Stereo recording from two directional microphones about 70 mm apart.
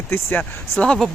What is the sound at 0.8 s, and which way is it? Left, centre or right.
Speech, centre.